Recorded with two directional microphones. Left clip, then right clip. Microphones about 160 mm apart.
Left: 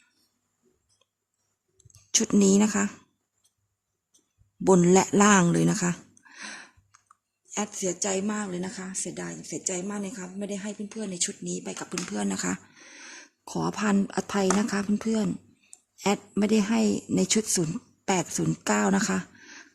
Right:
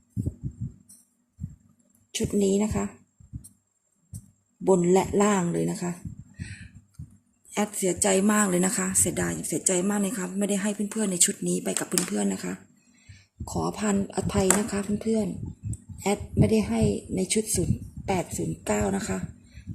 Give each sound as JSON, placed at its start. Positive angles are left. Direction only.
{"t": 2.1, "sound": "speech", "side_deg": 50}
{"t": 4.6, "sound": "speech", "side_deg": 55}
{"t": 6.4, "sound": "a sound", "side_deg": 40}
{"t": 7.5, "sound": "speech", "side_deg": 15}
{"t": 8.1, "sound": "speech", "side_deg": 0}
{"t": 12.3, "sound": "speech", "side_deg": 35}
{"t": 13.5, "sound": "speech", "side_deg": 50}